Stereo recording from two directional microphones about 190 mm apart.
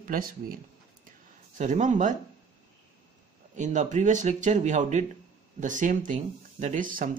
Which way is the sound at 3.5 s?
40° right (ahead or behind).